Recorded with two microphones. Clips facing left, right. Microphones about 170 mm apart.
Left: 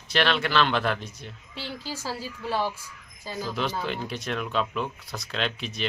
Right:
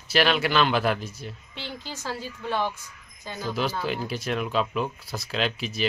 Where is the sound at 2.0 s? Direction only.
5° left (ahead or behind).